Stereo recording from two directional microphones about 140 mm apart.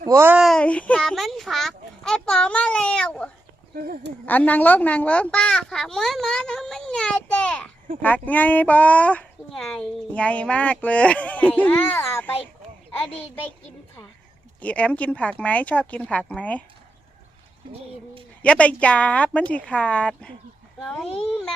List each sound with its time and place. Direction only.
0.1 s a child's voice: 15° right (ahead or behind)
0.3 s a sound: centre (ahead or behind)
4.3 s a child's voice: 10° left (ahead or behind)
14.6 s speech: 10° left (ahead or behind)
18.4 s a child's voice: 10° left (ahead or behind)